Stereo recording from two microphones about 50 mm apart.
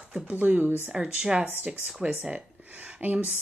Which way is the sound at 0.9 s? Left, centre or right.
Centre.